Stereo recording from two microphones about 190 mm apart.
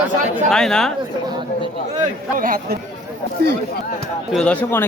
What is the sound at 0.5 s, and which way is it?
Speech, 5° left (ahead or behind).